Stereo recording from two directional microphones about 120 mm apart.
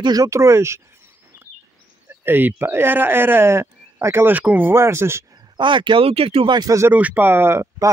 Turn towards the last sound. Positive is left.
turn(degrees=-20)  # may be behind; listen again after turning